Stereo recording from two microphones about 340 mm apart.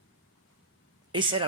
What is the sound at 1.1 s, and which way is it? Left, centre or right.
Speech, centre.